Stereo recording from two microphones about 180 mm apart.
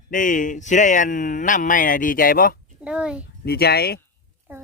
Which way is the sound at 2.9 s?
5° right (ahead or behind).